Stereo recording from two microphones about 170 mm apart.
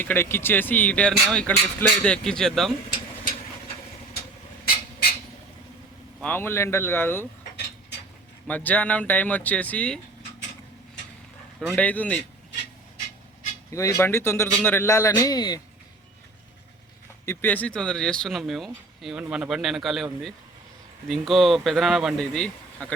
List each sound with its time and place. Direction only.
0.0 s speech: 10° left (ahead or behind)
6.2 s speech: 10° left (ahead or behind)
8.4 s speech: 10° left (ahead or behind)
11.7 s speech: 10° left (ahead or behind)
13.7 s speech: 20° left (ahead or behind)
17.2 s speech: 10° left (ahead or behind)